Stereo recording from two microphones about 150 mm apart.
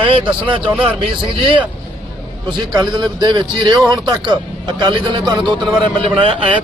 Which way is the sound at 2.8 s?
30° right (ahead or behind).